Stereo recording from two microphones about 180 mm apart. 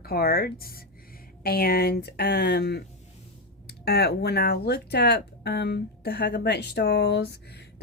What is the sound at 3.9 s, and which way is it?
A woman's voice, 65° left (ahead or behind).